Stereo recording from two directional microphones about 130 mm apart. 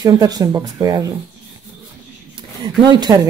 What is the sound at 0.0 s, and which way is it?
Speech, 30° right (ahead or behind).